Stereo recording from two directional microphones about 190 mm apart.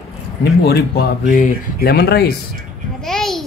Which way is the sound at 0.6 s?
55° left (ahead or behind).